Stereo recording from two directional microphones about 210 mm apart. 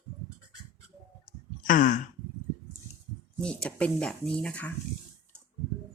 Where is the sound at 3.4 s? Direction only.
5° left (ahead or behind).